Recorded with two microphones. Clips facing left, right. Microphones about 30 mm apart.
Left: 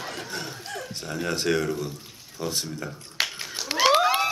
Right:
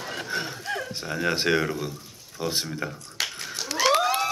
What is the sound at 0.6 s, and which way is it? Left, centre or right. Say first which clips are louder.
A man's voice: right 4 dB; right.